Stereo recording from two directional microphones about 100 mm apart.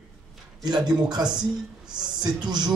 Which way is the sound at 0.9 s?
45° right (ahead or behind).